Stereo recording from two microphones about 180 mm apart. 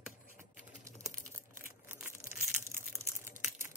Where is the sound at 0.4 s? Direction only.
15° right (ahead or behind).